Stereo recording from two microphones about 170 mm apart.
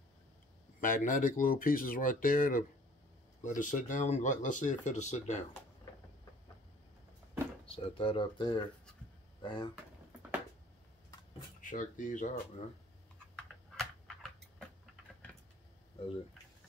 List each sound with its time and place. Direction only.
0.7 s speech: 55° left (ahead or behind)
7.6 s speech: 30° left (ahead or behind)
11.6 s speech: 50° left (ahead or behind)
13.7 s a sound: centre (ahead or behind)